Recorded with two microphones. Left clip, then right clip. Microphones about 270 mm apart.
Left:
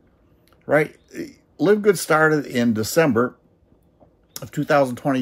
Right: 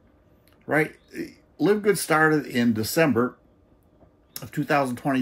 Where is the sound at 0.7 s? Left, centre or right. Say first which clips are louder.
Left 5 dB; centre.